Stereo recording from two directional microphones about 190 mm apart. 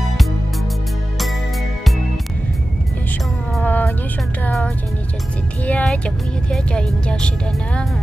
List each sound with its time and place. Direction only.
3.5 s music: 10° left (ahead or behind)